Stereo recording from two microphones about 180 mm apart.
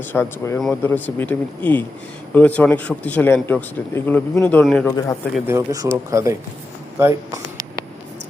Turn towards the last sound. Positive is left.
turn(degrees=-15)  # may be behind; listen again after turning